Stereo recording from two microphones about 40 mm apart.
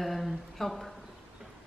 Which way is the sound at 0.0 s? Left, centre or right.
Centre.